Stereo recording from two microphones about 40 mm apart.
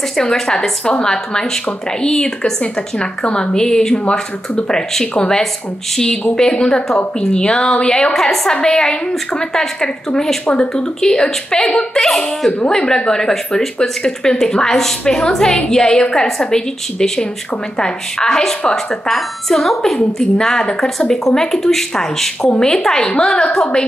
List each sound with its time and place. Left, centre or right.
0.1 s speech: centre
8.1 s speech: centre
13.7 s speech: left